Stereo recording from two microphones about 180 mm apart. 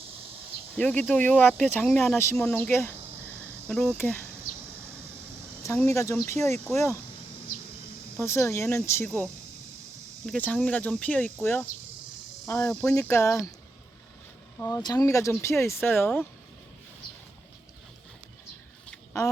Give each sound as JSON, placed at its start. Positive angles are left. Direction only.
{"t": 0.8, "sound": "speech", "side_deg": 5}
{"t": 5.6, "sound": "speech", "side_deg": 15}
{"t": 8.2, "sound": "speech", "side_deg": 15}
{"t": 12.5, "sound": "speech", "side_deg": 15}
{"t": 14.6, "sound": "speech", "side_deg": 20}